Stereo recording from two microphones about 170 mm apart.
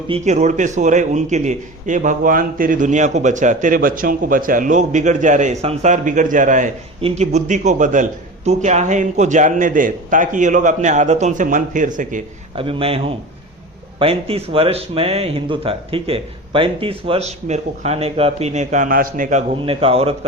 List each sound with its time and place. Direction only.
0.1 s a man's voice: 40° right (ahead or behind)
12.5 s speech: 35° right (ahead or behind)
19.6 s speech: 35° right (ahead or behind)